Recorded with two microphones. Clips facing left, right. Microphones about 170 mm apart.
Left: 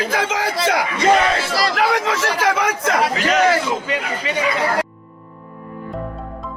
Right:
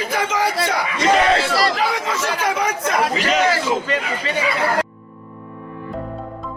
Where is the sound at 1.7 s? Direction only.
65° left (ahead or behind); by 3.0 s 85° left.